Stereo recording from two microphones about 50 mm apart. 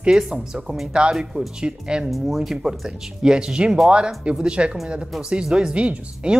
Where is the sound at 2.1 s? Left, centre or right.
Centre.